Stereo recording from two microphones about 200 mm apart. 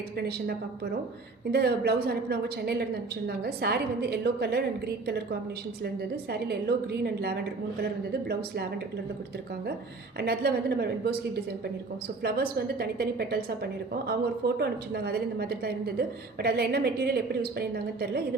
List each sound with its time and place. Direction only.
0.2 s a woman's voice: 55° right (ahead or behind)
5.8 s a woman's voice: 55° right (ahead or behind)
10.2 s a woman's voice: 50° right (ahead or behind)